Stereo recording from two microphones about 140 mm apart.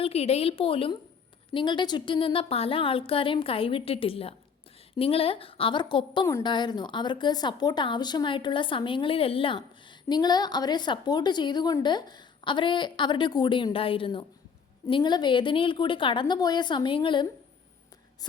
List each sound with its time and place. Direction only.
0.0 s a woman's voice: 45° left (ahead or behind)